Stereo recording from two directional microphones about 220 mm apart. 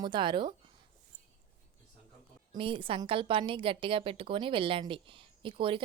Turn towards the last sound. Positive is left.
turn(degrees=-25)  # may be behind; listen again after turning